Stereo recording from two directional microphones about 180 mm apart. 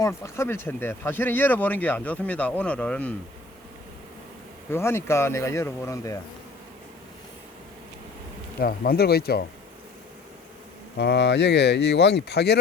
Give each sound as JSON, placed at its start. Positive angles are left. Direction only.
{"t": 0.0, "sound": "speech", "side_deg": 15}
{"t": 4.7, "sound": "speech", "side_deg": 15}
{"t": 8.6, "sound": "speech", "side_deg": 55}
{"t": 10.9, "sound": "speech", "side_deg": 65}